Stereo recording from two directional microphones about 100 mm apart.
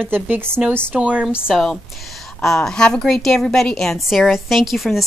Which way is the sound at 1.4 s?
Centre (ahead or behind).